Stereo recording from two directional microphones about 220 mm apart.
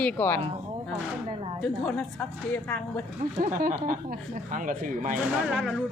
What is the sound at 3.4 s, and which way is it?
Speech, 40° right (ahead or behind).